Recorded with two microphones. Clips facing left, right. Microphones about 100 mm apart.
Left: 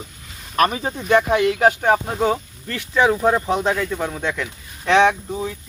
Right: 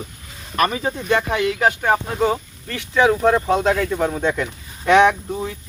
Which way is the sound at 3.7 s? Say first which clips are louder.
Right 3 dB; 5° right (ahead or behind).